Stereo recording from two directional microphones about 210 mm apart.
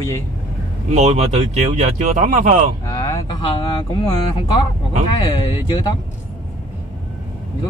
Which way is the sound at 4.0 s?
20° left (ahead or behind).